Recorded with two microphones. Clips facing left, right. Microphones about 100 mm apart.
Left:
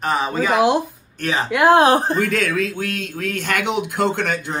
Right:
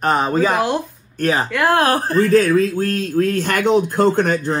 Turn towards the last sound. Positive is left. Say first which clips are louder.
# right 5 dB
turn(degrees=-40)  # may be behind; listen again after turning